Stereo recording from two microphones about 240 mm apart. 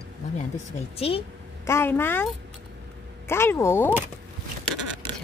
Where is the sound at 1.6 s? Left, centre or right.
Centre.